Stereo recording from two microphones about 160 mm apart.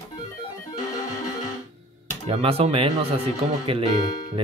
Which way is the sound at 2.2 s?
40° right (ahead or behind).